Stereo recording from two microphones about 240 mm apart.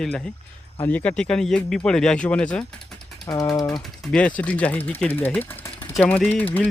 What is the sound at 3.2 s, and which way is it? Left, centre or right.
Speech, centre.